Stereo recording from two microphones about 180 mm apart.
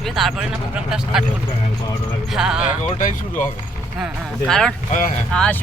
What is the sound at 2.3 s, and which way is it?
Speech, 5° right (ahead or behind).